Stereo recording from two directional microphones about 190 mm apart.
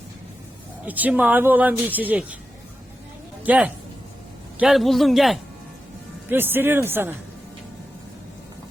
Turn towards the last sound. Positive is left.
turn(degrees=-10)  # may be behind; listen again after turning